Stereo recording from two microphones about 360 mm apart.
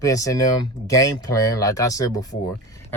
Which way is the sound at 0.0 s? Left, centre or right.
Centre.